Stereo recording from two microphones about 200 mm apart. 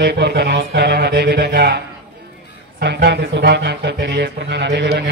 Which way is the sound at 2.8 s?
60° right (ahead or behind).